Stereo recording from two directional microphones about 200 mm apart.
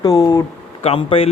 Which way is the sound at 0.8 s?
30° left (ahead or behind).